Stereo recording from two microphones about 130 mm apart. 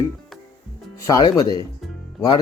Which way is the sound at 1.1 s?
30° left (ahead or behind).